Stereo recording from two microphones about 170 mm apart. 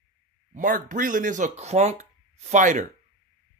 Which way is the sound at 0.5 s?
50° right (ahead or behind).